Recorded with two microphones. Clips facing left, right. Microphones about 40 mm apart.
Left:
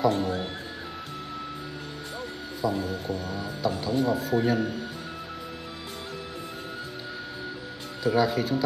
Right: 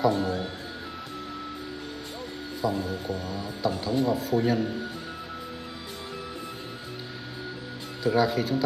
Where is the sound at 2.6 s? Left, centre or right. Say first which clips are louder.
Even; centre.